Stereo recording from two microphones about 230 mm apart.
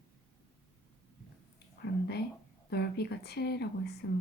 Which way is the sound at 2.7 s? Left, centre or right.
Left.